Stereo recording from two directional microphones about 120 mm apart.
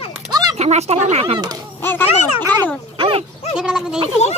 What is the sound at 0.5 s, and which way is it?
Speech, 65° right (ahead or behind).